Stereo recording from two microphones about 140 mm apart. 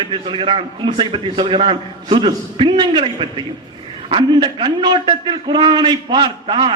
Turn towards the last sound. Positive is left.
turn(degrees=-35)  # may be behind; listen again after turning